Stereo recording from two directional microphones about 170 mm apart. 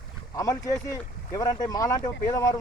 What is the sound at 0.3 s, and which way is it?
Speech, 20° left (ahead or behind).